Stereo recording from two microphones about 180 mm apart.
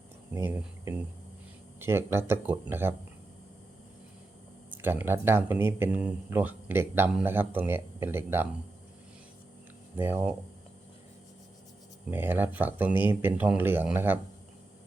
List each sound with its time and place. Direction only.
0.3 s speech: 15° right (ahead or behind)
4.7 s speech: 10° right (ahead or behind)
10.0 s speech: 10° right (ahead or behind)
12.1 s speech: 10° right (ahead or behind)